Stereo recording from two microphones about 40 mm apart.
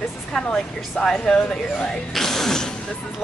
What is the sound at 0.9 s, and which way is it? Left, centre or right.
Speech, left.